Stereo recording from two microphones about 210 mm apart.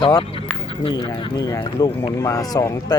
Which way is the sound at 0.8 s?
20° left (ahead or behind).